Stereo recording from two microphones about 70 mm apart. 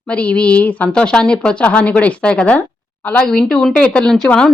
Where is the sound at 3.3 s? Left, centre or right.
Centre.